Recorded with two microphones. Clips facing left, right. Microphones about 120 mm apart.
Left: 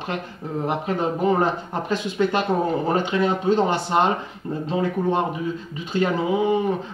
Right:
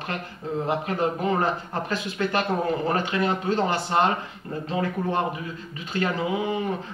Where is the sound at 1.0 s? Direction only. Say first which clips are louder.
Left 5 dB; 20° left (ahead or behind).